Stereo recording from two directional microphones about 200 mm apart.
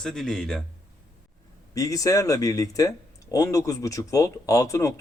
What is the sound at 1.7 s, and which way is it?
Speech, 15° left (ahead or behind).